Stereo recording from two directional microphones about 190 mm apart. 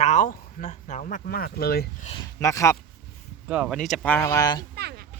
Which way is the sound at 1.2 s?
55° left (ahead or behind).